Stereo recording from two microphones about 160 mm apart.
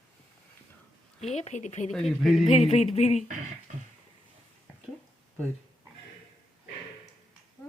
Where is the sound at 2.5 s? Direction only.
40° left (ahead or behind).